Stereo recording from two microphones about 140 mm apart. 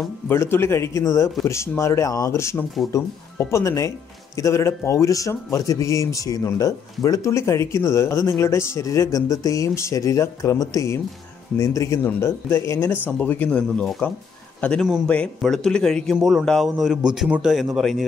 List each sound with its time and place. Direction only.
0.3 s a man's voice: 15° left (ahead or behind); by 18.0 s centre (ahead or behind)